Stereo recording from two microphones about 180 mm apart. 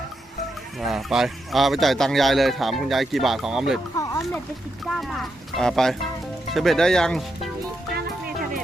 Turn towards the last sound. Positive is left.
turn(degrees=5)  # may be behind; listen again after turning